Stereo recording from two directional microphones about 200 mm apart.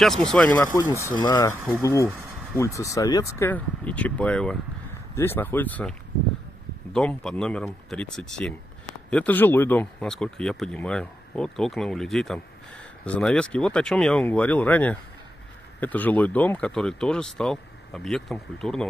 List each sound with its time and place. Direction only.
0.0 s speech: centre (ahead or behind)
0.7 s speech: 15° left (ahead or behind)